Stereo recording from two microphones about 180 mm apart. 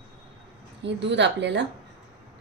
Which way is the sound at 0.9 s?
80° right.